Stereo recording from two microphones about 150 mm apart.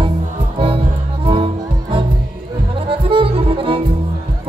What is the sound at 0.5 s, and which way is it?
Music, 35° right (ahead or behind).